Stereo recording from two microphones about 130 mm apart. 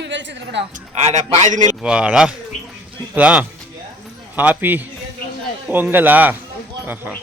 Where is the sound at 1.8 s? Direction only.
5° right (ahead or behind).